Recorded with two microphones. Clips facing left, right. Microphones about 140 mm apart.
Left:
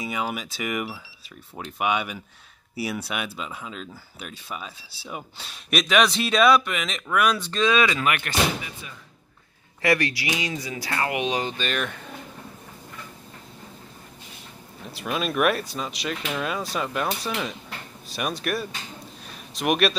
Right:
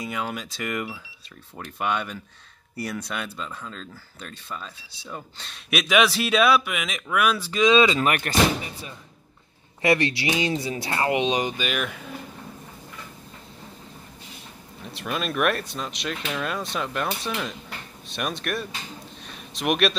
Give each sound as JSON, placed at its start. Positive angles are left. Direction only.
{"t": 0.0, "sound": "speech", "side_deg": 5}
{"t": 5.7, "sound": "speech", "side_deg": -5}
{"t": 7.7, "sound": "speech", "side_deg": -25}
{"t": 8.0, "sound": "speech", "side_deg": -40}
{"t": 9.8, "sound": "speech", "side_deg": -25}
{"t": 14.9, "sound": "speech", "side_deg": 0}
{"t": 19.2, "sound": "a sound", "side_deg": 0}